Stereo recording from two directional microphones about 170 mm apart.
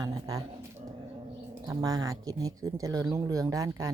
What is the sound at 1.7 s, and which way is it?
Speech, 20° right (ahead or behind).